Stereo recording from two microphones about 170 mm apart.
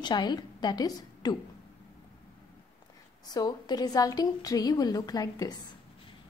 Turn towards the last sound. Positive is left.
turn(degrees=20)  # may be behind; listen again after turning